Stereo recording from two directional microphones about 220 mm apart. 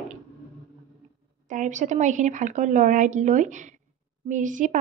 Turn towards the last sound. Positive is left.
turn(degrees=-35)  # may be behind; listen again after turning